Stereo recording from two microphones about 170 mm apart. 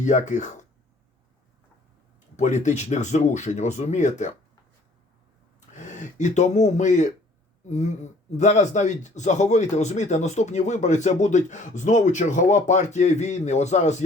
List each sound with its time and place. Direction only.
0.0 s speech: 45° left (ahead or behind)
2.3 s speech: 45° left (ahead or behind)
5.5 s speech: 45° left (ahead or behind)